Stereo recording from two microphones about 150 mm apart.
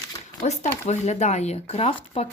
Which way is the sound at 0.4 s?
50° left (ahead or behind).